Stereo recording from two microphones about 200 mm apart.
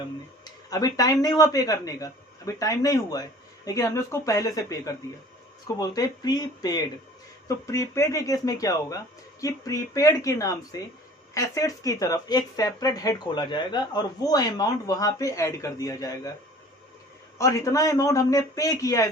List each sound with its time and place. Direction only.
0.4 s speech: 20° left (ahead or behind)
17.3 s speech: 15° left (ahead or behind)